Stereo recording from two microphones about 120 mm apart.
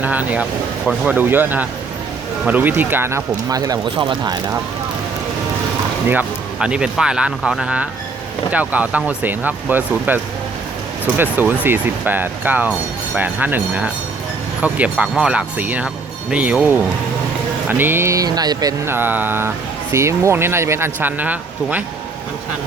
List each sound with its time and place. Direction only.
0.0 s speech: 15° right (ahead or behind); by 3.8 s 30° right (ahead or behind)
3.9 s speech: 40° right (ahead or behind)
6.1 s speech: 10° right (ahead or behind)
11.2 s speech: 15° right (ahead or behind); by 18.7 s 35° right (ahead or behind)
18.9 s speech: 15° right (ahead or behind)